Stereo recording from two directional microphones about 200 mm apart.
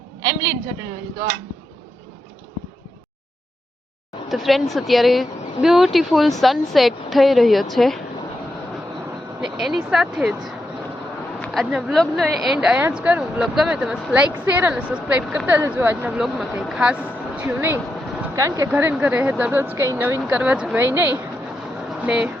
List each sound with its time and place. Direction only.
0.2 s a woman's voice: 20° right (ahead or behind)
4.3 s speech: centre (ahead or behind)
9.4 s speech: centre (ahead or behind)
11.4 s speech: centre (ahead or behind)